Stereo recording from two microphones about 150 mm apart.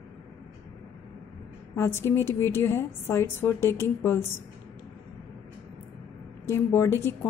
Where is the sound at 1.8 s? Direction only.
15° left (ahead or behind).